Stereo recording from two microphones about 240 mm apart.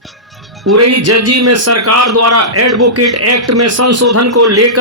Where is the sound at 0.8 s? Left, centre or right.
Right.